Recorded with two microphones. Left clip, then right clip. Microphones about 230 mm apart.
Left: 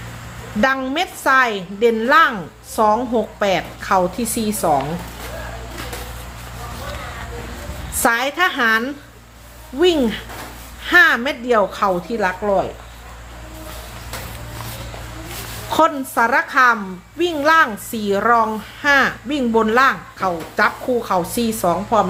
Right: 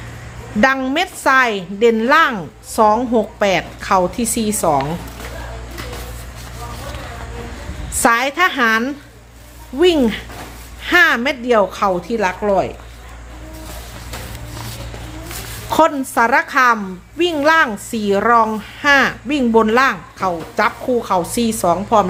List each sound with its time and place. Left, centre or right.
0.6 s a child's voice: centre
8.0 s a child's voice: centre
15.7 s a child's voice: centre